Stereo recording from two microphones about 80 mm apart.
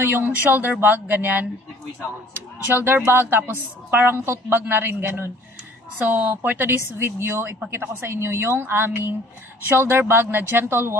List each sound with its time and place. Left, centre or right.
0.0 s a woman's voice: right
2.6 s a woman's voice: right